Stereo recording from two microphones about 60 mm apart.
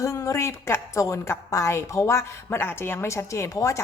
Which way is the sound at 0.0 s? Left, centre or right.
Left.